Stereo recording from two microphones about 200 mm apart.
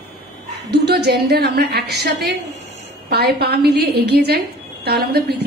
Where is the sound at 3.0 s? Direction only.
50° right (ahead or behind).